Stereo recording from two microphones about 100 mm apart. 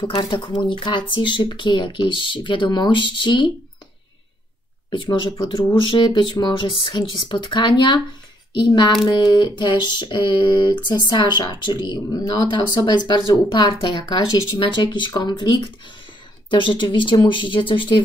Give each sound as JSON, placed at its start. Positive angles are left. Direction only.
{"t": 0.0, "sound": "speech", "side_deg": 55}
{"t": 4.9, "sound": "speech", "side_deg": 55}